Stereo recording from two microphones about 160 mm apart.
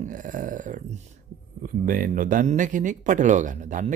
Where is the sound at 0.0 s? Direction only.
55° right (ahead or behind).